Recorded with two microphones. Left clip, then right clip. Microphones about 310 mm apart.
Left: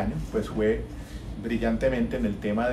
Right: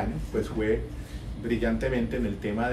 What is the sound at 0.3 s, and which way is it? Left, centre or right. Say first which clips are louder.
Speech: left 1 dB; centre.